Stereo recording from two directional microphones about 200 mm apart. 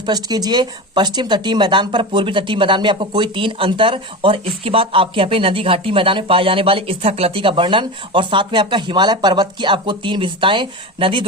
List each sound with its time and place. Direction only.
0.0 s speech: 20° right (ahead or behind)